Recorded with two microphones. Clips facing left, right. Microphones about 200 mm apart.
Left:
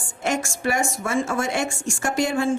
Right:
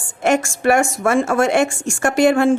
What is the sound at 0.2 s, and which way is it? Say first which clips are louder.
A woman's voice: right 8 dB; 65° right (ahead or behind).